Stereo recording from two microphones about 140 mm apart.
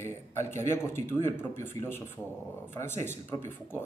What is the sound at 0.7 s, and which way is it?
Speech, 15° left (ahead or behind).